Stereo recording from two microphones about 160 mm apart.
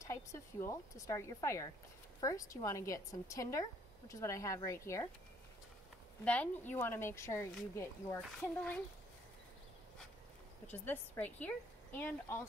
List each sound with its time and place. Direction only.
0.0 s a woman's voice: 20° left (ahead or behind)
6.2 s a woman's voice: 10° left (ahead or behind)
10.7 s a woman's voice: 10° left (ahead or behind)